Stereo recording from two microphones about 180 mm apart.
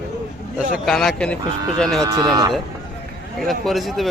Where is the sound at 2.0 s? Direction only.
20° right (ahead or behind).